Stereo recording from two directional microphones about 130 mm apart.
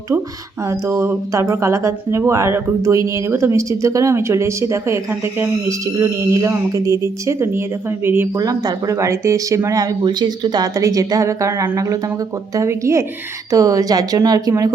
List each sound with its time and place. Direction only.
0.6 s speech: 25° right (ahead or behind)
8.4 s speech: 25° right (ahead or behind)